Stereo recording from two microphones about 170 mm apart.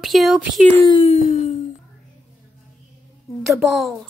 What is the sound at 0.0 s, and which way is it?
Speech, centre (ahead or behind).